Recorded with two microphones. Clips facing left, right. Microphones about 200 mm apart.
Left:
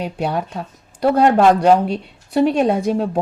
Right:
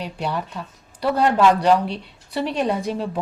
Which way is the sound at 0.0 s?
50° left (ahead or behind).